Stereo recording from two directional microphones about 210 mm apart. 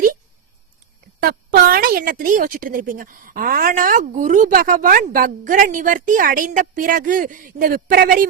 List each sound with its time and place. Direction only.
1.2 s speech: 45° right (ahead or behind)